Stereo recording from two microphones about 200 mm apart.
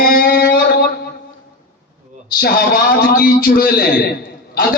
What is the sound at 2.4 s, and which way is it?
A man's voice, 50° left (ahead or behind).